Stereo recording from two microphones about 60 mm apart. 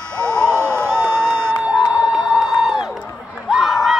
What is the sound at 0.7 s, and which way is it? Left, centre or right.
Crowd, right.